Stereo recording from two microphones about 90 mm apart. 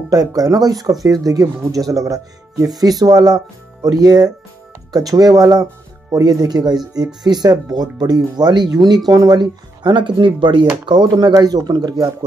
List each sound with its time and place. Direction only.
0.1 s speech: 45° right (ahead or behind)